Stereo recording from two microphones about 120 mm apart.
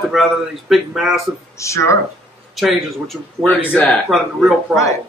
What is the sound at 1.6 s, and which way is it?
Speech, 25° left (ahead or behind).